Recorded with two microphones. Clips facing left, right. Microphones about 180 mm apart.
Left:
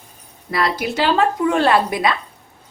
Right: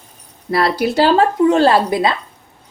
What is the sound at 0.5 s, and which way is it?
Speech, 35° right (ahead or behind).